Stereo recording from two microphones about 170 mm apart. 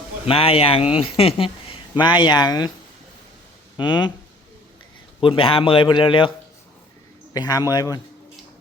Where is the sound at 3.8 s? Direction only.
25° left (ahead or behind).